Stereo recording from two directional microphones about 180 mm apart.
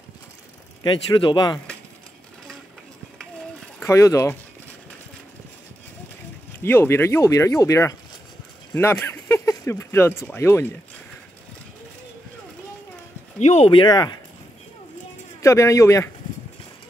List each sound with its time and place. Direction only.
0.8 s speech: 25° left (ahead or behind)
3.8 s speech: 15° left (ahead or behind)
6.6 s speech: 15° left (ahead or behind)
13.4 s speech: 40° left (ahead or behind); by 14.1 s 25° left (ahead or behind)
15.4 s speech: 15° left (ahead or behind)